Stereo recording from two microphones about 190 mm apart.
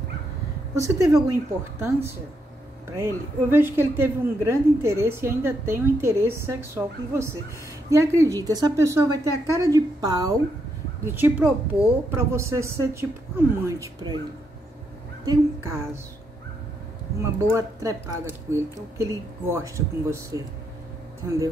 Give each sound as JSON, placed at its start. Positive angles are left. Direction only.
{"t": 0.9, "sound": "a woman's voice", "side_deg": -15}
{"t": 15.2, "sound": "a woman's voice", "side_deg": -15}
{"t": 17.2, "sound": "a woman's voice", "side_deg": -15}